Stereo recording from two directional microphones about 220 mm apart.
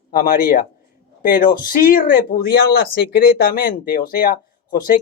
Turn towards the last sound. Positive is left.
turn(degrees=40)  # may be behind; listen again after turning